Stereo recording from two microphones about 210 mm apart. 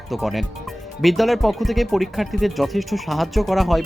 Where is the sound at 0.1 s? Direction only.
Centre (ahead or behind).